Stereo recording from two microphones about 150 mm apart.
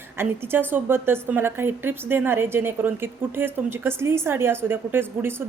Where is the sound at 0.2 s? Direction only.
15° right (ahead or behind).